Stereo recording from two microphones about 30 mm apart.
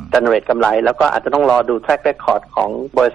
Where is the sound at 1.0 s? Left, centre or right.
Centre.